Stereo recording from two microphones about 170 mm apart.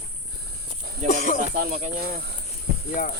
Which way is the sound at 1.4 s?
60° right (ahead or behind).